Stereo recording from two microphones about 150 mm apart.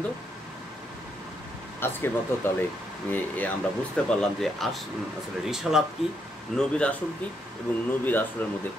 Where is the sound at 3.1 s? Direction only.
10° left (ahead or behind).